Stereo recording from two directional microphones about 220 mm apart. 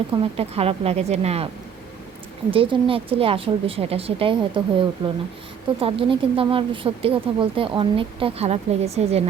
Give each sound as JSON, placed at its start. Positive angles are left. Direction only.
{"t": 0.1, "sound": "speech", "side_deg": -25}
{"t": 2.5, "sound": "speech", "side_deg": -25}